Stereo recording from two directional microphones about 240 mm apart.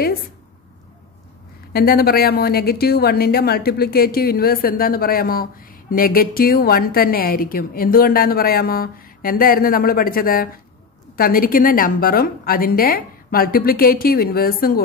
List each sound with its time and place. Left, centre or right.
1.7 s speech: left